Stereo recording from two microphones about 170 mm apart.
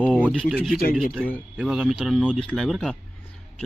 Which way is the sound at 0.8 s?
60° left (ahead or behind).